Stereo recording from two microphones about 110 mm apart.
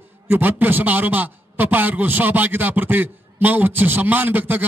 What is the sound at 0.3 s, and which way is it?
A man's voice, 15° right (ahead or behind).